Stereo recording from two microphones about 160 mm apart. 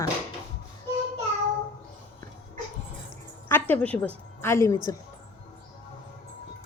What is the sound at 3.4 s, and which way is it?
A woman's voice, 10° left (ahead or behind).